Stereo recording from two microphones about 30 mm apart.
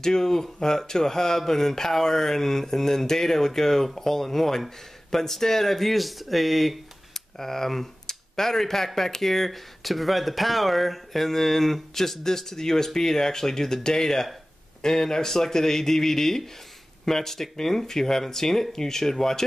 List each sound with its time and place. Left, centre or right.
0.0 s speech: centre
7.2 s speech: centre